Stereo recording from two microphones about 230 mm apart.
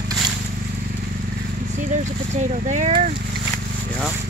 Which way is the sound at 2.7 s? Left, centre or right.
Right.